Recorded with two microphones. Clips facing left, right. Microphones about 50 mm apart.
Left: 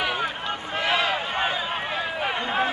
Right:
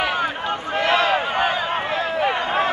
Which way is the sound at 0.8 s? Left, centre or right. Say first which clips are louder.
Right 5 dB; centre.